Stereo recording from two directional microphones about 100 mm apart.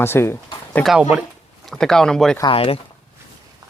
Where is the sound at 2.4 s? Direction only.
75° left (ahead or behind).